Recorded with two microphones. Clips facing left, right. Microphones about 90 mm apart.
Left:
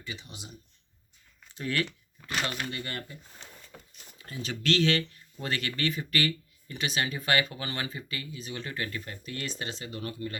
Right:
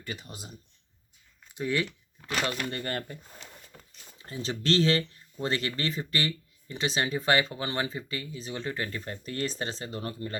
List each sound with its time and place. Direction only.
0.0 s speech: 50° right (ahead or behind)
1.5 s speech: 15° right (ahead or behind)
2.6 s speech: 40° right (ahead or behind)
3.7 s a sound: 90° left
4.2 s speech: 30° right (ahead or behind)